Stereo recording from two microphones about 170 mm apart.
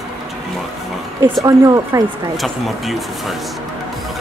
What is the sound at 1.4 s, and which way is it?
Speech, 20° right (ahead or behind).